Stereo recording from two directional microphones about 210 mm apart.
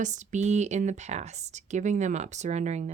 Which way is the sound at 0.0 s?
35° right (ahead or behind).